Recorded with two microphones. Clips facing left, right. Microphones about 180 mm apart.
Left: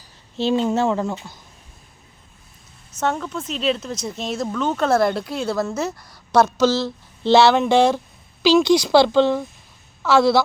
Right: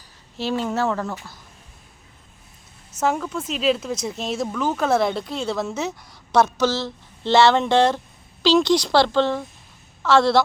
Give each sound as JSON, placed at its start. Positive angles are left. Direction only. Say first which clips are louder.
{"t": 0.3, "sound": "a woman's voice", "louder": "left 4 dB", "side_deg": 25}
{"t": 3.0, "sound": "a woman's voice", "louder": "right 1 dB", "side_deg": -5}